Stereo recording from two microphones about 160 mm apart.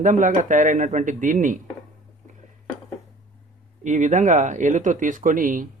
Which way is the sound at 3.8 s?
50° right (ahead or behind).